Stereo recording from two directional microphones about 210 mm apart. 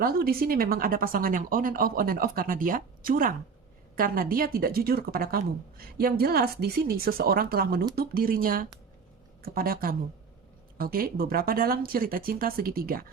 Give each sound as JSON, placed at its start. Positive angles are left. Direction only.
{"t": 0.0, "sound": "speech", "side_deg": -45}